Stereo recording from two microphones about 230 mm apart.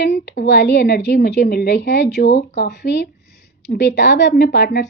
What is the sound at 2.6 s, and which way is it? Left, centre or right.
A woman's voice, left.